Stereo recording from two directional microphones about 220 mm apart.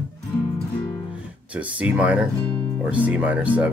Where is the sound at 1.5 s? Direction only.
5° right (ahead or behind).